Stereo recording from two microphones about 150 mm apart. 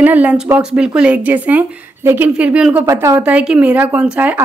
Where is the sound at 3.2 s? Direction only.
5° right (ahead or behind).